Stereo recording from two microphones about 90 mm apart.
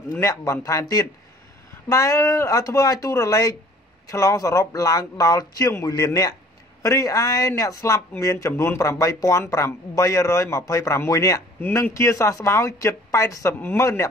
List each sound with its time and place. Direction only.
0.2 s speech: 40° left (ahead or behind)